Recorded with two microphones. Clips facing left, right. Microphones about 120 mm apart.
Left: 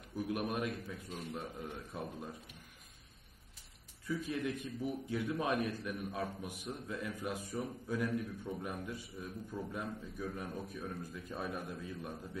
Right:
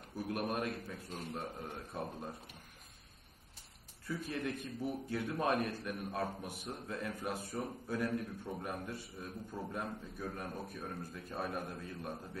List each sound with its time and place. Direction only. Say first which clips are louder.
0.2 s a man's voice: even; 35° right (ahead or behind)
4.1 s a man's voice: left 2 dB; 45° right (ahead or behind)